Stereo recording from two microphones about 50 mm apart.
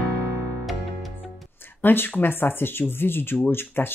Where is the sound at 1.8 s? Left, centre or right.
Left.